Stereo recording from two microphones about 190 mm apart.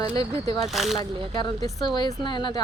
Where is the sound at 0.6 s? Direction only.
Centre (ahead or behind).